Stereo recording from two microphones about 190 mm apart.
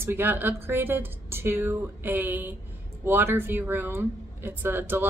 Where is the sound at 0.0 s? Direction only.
10° right (ahead or behind).